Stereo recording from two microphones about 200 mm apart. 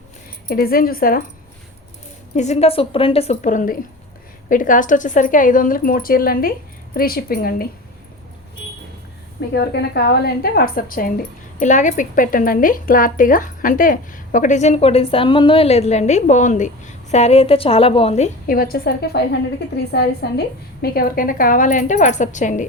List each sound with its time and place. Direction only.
0.4 s speech: 45° left (ahead or behind)
2.3 s speech: 35° left (ahead or behind)
9.5 s speech: 55° left (ahead or behind); by 18.3 s 30° left (ahead or behind)
18.4 s a woman's voice: 50° left (ahead or behind)